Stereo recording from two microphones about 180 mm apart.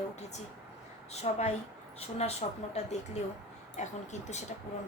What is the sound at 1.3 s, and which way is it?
Speech, 40° left (ahead or behind).